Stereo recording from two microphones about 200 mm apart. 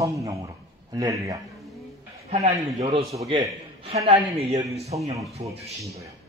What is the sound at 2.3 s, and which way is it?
A man's voice, 30° right (ahead or behind).